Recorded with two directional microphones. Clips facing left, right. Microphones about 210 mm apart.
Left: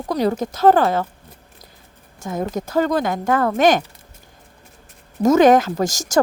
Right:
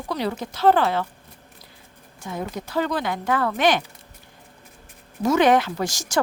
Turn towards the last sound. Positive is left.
turn(degrees=45)  # may be behind; listen again after turning